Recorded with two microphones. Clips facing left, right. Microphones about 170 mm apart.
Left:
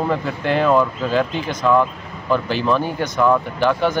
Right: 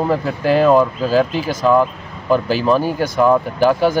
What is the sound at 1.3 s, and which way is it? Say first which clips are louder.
Speech: right 3 dB; 5° right (ahead or behind).